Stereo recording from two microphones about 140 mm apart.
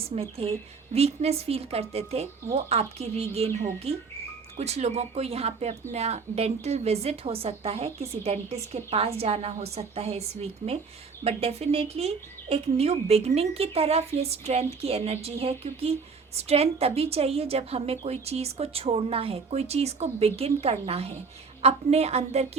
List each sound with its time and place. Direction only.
0.2 s a woman's voice: 45° right (ahead or behind)